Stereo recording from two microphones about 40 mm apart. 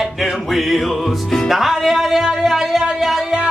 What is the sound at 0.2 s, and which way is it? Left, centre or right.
Music, centre.